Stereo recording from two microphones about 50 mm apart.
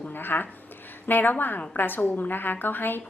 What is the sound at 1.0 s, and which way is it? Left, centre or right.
A woman's voice, left.